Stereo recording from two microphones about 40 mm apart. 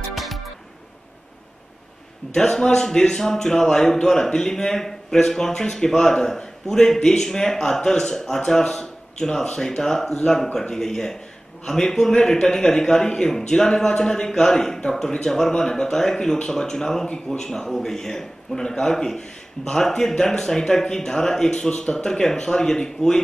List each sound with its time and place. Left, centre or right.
0.1 s music: centre
2.3 s a man's voice: centre
17.5 s a man's voice: centre